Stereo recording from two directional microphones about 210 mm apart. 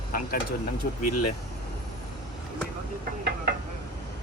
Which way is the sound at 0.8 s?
40° left (ahead or behind).